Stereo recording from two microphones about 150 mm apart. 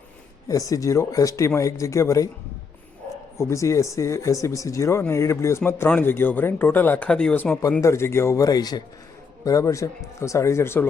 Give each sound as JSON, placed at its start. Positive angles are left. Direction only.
{"t": 0.4, "sound": "speech", "side_deg": 20}
{"t": 3.3, "sound": "speech", "side_deg": 20}
{"t": 7.8, "sound": "speech", "side_deg": 20}